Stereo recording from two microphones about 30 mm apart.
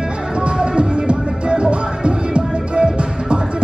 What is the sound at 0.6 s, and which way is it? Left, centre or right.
Music, right.